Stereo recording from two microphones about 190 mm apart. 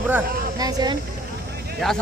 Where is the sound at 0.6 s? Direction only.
20° right (ahead or behind).